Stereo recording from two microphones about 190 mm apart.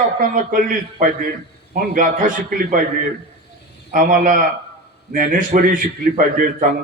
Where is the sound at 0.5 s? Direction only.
45° right (ahead or behind).